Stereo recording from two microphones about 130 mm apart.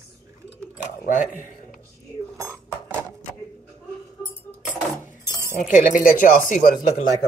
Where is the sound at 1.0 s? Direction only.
90° left.